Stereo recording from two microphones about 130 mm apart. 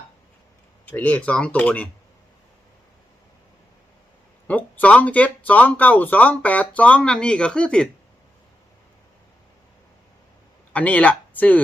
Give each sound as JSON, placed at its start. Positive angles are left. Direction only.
{"t": 0.9, "sound": "speech", "side_deg": 10}
{"t": 4.4, "sound": "speech", "side_deg": 10}
{"t": 10.7, "sound": "speech", "side_deg": 10}